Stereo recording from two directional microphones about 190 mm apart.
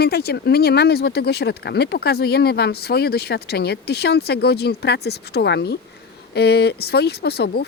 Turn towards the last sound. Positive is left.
turn(degrees=55)  # may be behind; listen again after turning